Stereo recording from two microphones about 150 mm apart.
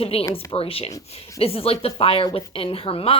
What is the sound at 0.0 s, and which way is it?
A woman's voice, 40° left (ahead or behind).